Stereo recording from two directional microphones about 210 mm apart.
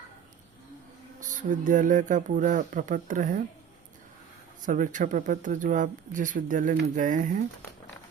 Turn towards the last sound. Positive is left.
turn(degrees=-40)  # may be behind; listen again after turning